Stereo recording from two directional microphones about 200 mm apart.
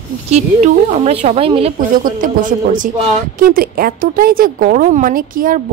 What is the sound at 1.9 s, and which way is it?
Speech, 45° right (ahead or behind).